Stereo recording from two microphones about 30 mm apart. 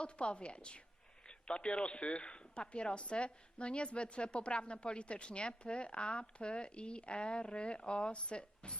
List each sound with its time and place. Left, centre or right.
0.0 s speech: left